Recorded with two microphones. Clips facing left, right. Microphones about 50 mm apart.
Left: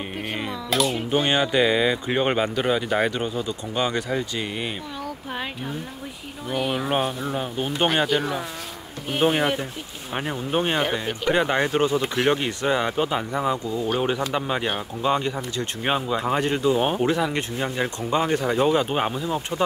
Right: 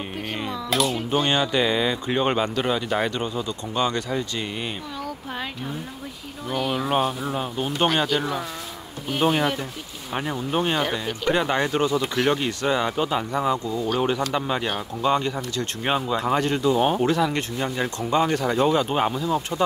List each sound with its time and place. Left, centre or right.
0.3 s speech: centre
0.7 s speech: centre
0.9 s speech: centre
6.5 s speech: centre
11.2 s speech: centre
11.5 s speech: left; by 16.2 s centre
16.3 s speech: left
19.2 s speech: left